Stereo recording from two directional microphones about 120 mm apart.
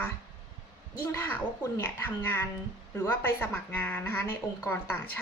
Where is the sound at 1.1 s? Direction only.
20° left (ahead or behind).